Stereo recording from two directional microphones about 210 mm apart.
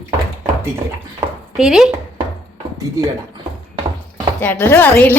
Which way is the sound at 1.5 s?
Centre (ahead or behind).